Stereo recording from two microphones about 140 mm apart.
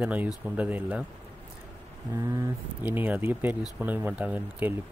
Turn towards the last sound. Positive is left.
turn(degrees=-10)  # may be behind; listen again after turning